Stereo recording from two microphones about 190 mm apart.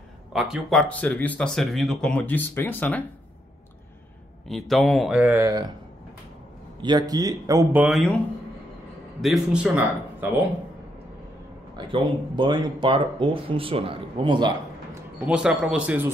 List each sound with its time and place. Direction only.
0.3 s speech: centre (ahead or behind)
4.5 s speech: centre (ahead or behind); by 5.7 s 15° right (ahead or behind)
6.8 s a man's voice: 20° right (ahead or behind); by 8.2 s centre (ahead or behind)
9.2 s a man's voice: 5° right (ahead or behind)
11.7 s speech: 25° right (ahead or behind)
15.2 s speech: 5° right (ahead or behind)